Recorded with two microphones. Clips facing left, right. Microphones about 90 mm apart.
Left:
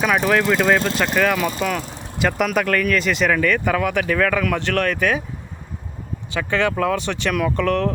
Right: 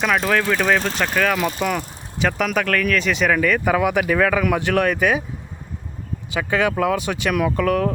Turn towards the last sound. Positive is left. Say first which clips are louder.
# even
turn(degrees=-5)  # may be behind; listen again after turning